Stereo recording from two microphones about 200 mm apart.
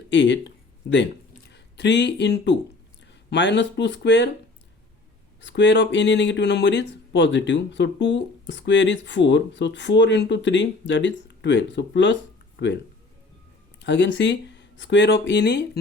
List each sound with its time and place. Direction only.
0.1 s speech: 60° left (ahead or behind)
5.4 s speech: 65° left (ahead or behind)